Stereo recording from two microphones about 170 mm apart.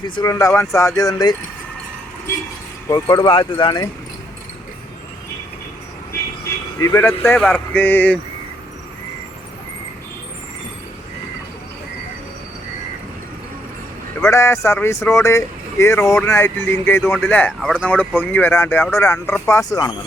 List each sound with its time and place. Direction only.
0.2 s speech: 20° left (ahead or behind)
2.9 s speech: 25° left (ahead or behind)
6.7 s speech: 20° left (ahead or behind)
7.3 s speech: 5° left (ahead or behind)
14.2 s speech: 15° left (ahead or behind)